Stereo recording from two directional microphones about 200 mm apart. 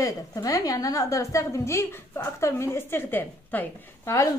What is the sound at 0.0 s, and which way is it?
A woman's voice, 15° left (ahead or behind).